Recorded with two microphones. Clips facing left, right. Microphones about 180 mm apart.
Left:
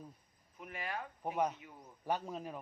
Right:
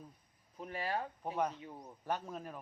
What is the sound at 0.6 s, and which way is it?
A man's voice, 35° right (ahead or behind).